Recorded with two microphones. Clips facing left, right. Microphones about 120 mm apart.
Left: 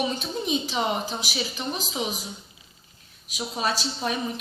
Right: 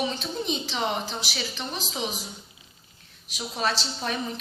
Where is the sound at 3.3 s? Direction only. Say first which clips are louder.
Left 1 dB; 10° left (ahead or behind).